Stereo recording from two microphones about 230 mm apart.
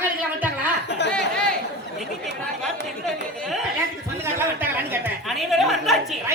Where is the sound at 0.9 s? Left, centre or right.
Left.